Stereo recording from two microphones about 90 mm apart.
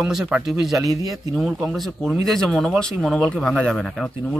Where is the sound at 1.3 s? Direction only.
5° right (ahead or behind).